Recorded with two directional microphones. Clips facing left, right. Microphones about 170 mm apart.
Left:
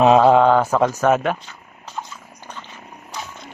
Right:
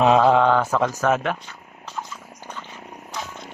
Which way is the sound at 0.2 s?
30° left (ahead or behind).